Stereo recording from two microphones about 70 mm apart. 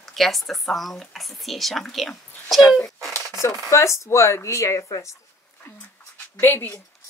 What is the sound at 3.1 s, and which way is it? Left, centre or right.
Speech, left.